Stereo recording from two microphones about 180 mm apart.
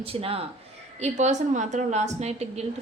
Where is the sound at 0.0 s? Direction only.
30° right (ahead or behind).